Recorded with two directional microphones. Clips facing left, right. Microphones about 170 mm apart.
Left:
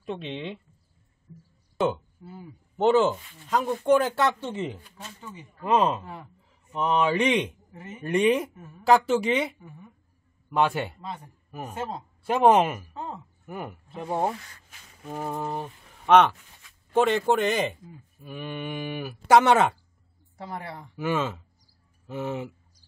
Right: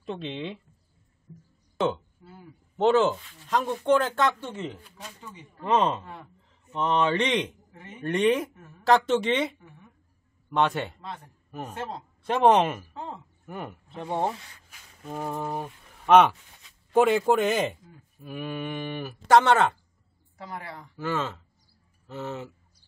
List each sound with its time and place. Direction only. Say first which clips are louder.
0.0 s a man's voice: even; 5° left (ahead or behind)
2.2 s a man's voice: left 5 dB; 5° left (ahead or behind)
5.2 s a man's voice: left 1 dB; 5° left (ahead or behind)
20.3 s a man's voice: left 2 dB; 25° left (ahead or behind)